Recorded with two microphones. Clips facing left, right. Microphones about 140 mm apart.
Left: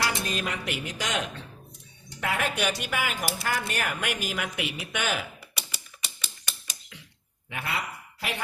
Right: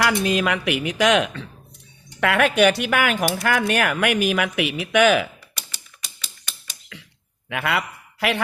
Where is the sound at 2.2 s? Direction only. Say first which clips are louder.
Right 11 dB; 75° right (ahead or behind); by 5.2 s 90° right.